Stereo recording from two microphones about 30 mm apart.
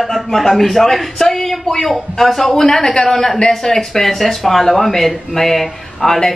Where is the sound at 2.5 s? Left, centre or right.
Centre.